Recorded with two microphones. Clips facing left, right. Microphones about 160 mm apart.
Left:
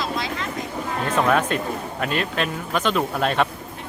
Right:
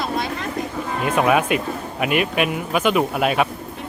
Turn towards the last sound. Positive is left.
turn(degrees=-10)  # may be behind; listen again after turning